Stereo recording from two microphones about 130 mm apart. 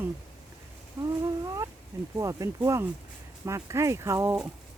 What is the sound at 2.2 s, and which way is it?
Speech, 25° right (ahead or behind).